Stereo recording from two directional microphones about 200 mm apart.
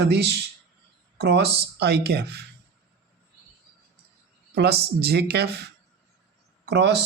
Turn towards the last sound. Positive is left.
turn(degrees=-55)  # may be behind; listen again after turning